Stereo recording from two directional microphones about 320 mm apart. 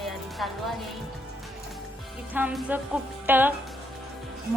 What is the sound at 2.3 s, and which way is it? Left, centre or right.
Music, centre.